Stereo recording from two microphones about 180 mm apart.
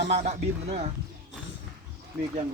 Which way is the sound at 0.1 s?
35° right (ahead or behind).